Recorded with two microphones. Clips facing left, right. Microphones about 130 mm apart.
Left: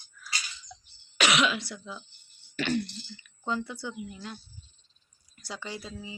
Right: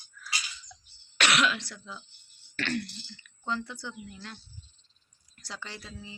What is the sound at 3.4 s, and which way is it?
Speech, 10° left (ahead or behind).